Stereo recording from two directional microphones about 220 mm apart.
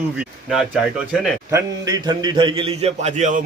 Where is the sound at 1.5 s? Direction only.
15° right (ahead or behind).